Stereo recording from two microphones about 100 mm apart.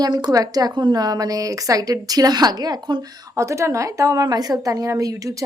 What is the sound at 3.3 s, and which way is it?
A woman's voice, 30° right (ahead or behind).